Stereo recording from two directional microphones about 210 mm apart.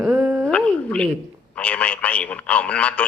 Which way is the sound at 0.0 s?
10° right (ahead or behind).